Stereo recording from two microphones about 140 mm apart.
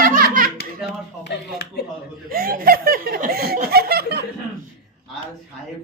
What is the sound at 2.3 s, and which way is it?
Snicker, 90° right.